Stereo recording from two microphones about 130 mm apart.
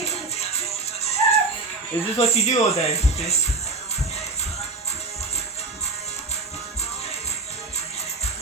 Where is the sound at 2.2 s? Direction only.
55° left (ahead or behind).